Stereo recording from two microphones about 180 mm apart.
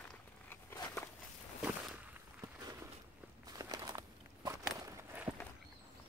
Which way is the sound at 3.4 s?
20° right (ahead or behind).